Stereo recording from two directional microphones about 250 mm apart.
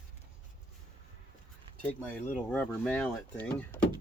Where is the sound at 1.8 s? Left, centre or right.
Centre.